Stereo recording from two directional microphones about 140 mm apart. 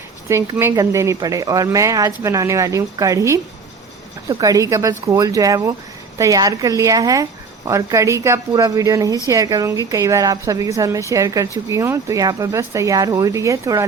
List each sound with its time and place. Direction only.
0.3 s speech: 20° right (ahead or behind)